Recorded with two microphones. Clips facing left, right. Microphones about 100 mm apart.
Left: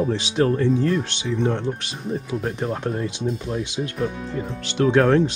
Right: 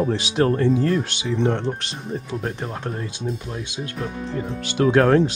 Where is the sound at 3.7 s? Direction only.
Centre (ahead or behind).